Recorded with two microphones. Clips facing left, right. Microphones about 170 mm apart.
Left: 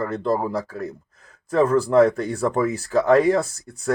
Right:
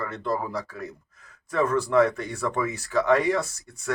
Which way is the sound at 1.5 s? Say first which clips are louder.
Left 5 dB; 30° left (ahead or behind).